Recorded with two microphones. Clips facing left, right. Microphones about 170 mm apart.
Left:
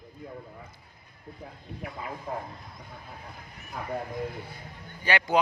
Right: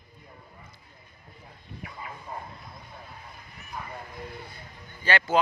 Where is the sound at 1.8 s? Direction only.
60° left (ahead or behind).